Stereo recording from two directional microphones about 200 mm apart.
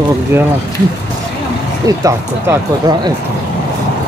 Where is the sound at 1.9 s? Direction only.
15° right (ahead or behind).